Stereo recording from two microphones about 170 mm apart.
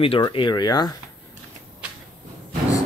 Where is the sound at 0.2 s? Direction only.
25° left (ahead or behind).